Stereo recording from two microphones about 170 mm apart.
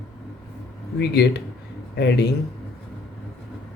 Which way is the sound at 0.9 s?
75° left (ahead or behind).